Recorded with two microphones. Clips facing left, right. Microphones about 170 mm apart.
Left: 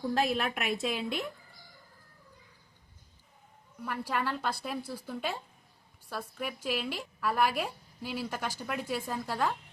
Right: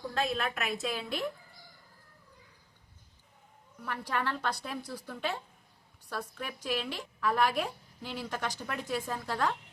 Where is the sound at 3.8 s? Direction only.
10° left (ahead or behind).